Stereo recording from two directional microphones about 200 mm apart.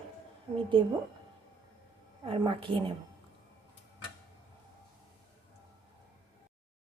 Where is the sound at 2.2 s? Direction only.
25° right (ahead or behind).